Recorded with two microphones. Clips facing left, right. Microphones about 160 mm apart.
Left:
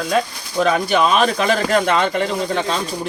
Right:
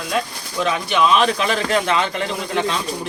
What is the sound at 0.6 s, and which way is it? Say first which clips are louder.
Speech: left 3 dB; 40° left (ahead or behind).